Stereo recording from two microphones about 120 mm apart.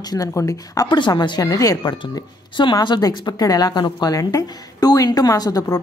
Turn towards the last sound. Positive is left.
turn(degrees=30)  # may be behind; listen again after turning